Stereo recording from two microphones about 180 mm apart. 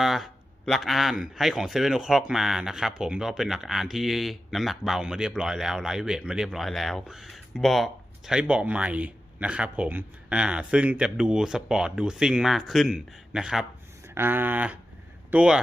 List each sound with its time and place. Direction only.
0.0 s speech: centre (ahead or behind)
14.1 s a sound: 10° right (ahead or behind)
15.3 s speech: 5° right (ahead or behind)